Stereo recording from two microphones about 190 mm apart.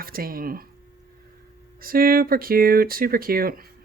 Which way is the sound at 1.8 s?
50° right (ahead or behind).